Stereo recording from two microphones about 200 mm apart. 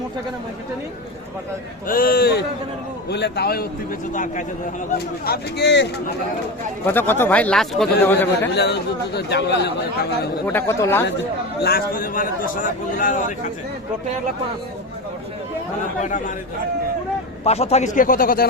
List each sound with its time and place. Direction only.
1.9 s a man's voice: 45° left (ahead or behind)
4.1 s speech: 40° left (ahead or behind)
4.9 s a man's voice: 50° left (ahead or behind)
6.8 s a man's voice: 10° left (ahead or behind)
8.5 s a man's voice: 55° left (ahead or behind)
10.4 s a man's voice: 10° left (ahead or behind)
11.6 s a man's voice: 45° left (ahead or behind)
16.0 s speech: 40° left (ahead or behind)
17.4 s speech: 30° left (ahead or behind)